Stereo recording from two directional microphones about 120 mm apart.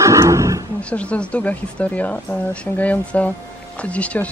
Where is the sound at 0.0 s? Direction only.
25° right (ahead or behind).